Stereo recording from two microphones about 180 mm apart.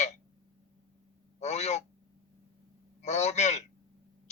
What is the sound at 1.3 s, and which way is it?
Speech, 40° left (ahead or behind).